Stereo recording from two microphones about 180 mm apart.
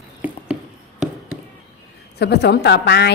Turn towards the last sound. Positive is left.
turn(degrees=65)  # may be behind; listen again after turning